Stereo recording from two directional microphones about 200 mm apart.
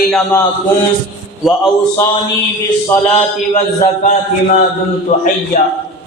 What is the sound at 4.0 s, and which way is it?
A man's voice, 40° left (ahead or behind).